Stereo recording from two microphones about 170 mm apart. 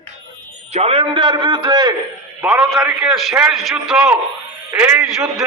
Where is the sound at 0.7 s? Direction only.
35° right (ahead or behind).